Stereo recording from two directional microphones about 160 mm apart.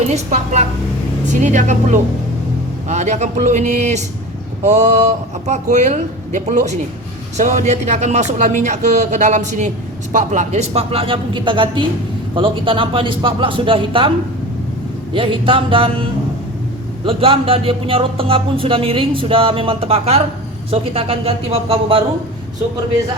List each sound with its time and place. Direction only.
0.0 s speech: 45° right (ahead or behind)
15.1 s speech: 35° right (ahead or behind)
17.1 s speech: 35° right (ahead or behind)